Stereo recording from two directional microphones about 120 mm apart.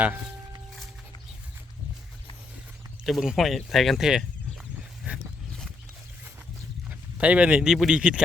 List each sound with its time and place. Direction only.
0.0 s speech: 15° right (ahead or behind)
3.0 s speech: 5° right (ahead or behind)
5.0 s a sound: 10° right (ahead or behind)
7.2 s speech: 10° right (ahead or behind)